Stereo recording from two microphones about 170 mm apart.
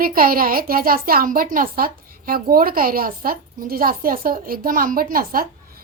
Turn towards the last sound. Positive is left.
turn(degrees=-60)  # may be behind; listen again after turning